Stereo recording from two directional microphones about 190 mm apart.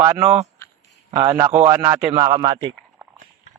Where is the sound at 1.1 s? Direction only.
25° right (ahead or behind).